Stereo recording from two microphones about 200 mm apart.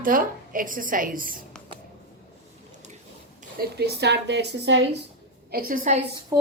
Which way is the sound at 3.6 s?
50° right (ahead or behind).